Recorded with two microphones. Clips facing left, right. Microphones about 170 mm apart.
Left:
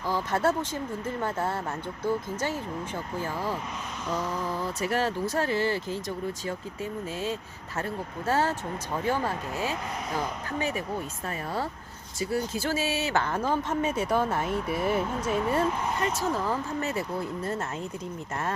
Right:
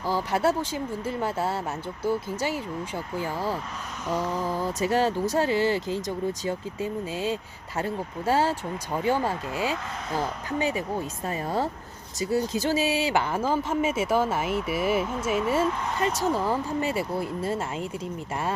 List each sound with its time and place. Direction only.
0.1 s speech: 10° right (ahead or behind)